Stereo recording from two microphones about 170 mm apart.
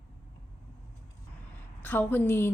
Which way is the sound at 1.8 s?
10° left (ahead or behind).